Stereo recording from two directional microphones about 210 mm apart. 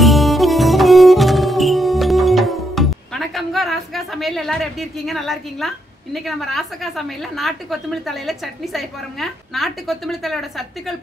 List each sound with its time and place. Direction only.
0.0 s music: centre (ahead or behind)
6.1 s a woman's voice: centre (ahead or behind)